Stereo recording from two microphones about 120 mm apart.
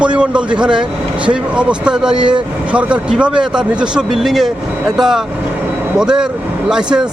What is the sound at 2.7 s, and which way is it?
Speech, 10° right (ahead or behind).